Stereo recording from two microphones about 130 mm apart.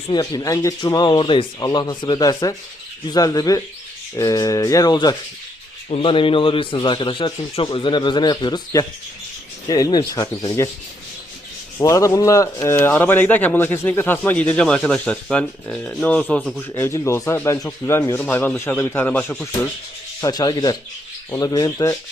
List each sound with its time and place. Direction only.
0.1 s speech: 30° left (ahead or behind)
5.9 s speech: 40° left (ahead or behind); by 10.7 s 25° left (ahead or behind)
11.8 s a man's voice: 25° left (ahead or behind); by 19.5 s 10° left (ahead or behind)
20.2 s speech: 30° left (ahead or behind)